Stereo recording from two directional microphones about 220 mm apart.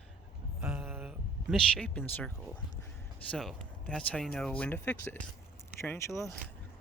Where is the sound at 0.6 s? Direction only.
Centre (ahead or behind).